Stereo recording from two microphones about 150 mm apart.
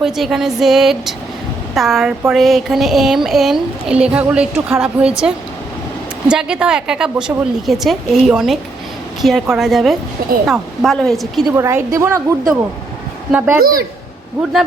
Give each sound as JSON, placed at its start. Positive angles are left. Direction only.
{"t": 0.0, "sound": "speech", "side_deg": 0}
{"t": 11.5, "sound": "a woman's voice", "side_deg": -15}
{"t": 13.3, "sound": "a woman's voice", "side_deg": -5}